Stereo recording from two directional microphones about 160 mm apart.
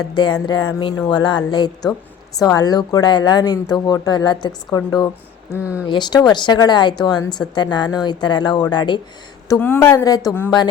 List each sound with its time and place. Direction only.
0.2 s speech: 25° left (ahead or behind)
9.5 s speech: 15° left (ahead or behind)